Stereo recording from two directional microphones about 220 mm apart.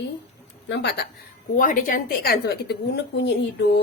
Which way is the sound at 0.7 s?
50° left (ahead or behind).